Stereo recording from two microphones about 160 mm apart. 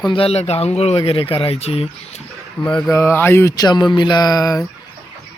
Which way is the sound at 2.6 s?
5° left (ahead or behind).